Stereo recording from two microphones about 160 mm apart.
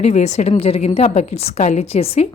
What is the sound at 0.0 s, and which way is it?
A woman's voice, 45° left (ahead or behind).